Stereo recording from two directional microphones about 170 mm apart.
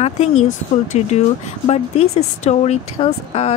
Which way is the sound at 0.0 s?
40° left (ahead or behind).